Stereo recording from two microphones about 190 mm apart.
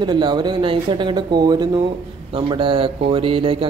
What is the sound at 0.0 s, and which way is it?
A man's voice, 25° right (ahead or behind).